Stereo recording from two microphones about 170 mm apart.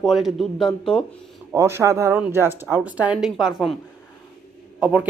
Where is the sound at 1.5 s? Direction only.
15° right (ahead or behind).